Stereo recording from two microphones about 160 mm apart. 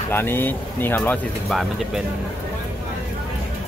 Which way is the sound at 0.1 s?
15° left (ahead or behind).